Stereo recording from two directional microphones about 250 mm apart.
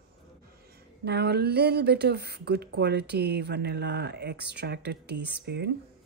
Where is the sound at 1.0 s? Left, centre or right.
Right.